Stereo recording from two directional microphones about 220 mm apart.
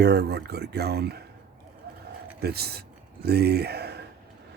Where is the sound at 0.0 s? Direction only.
50° right (ahead or behind).